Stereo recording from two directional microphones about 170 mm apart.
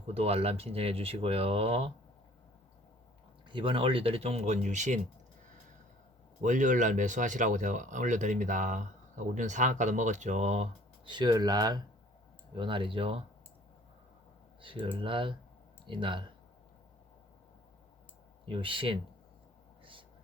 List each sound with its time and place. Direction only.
0.1 s speech: 35° right (ahead or behind)
3.5 s speech: 30° right (ahead or behind); by 4.9 s 45° right (ahead or behind)
6.4 s speech: 50° right (ahead or behind); by 13.1 s 30° right (ahead or behind)
14.6 s speech: 30° right (ahead or behind)
18.4 s speech: 30° right (ahead or behind)
19.8 s a sound: 30° right (ahead or behind)